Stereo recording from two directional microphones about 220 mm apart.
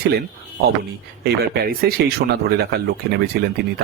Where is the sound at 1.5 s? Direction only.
45° right (ahead or behind).